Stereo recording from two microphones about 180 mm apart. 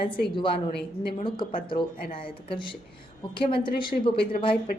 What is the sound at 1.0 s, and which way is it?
A woman's voice, 30° left (ahead or behind).